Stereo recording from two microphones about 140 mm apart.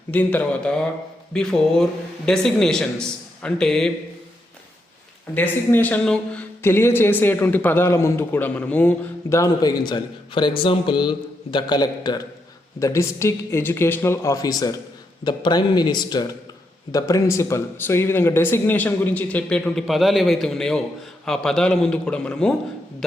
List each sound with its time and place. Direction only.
0.1 s a man's voice: 10° left (ahead or behind)
5.3 s a man's voice: 10° left (ahead or behind)
9.3 s a man's voice: 25° left (ahead or behind); by 22.5 s 5° left (ahead or behind)